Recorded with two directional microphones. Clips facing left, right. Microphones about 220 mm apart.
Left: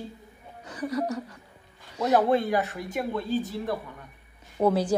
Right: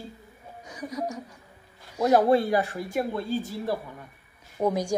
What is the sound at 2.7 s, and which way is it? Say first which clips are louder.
Speech: right 3 dB; 30° right (ahead or behind).